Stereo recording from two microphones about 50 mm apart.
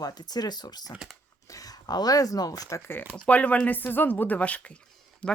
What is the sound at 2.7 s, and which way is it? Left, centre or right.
Speech, left.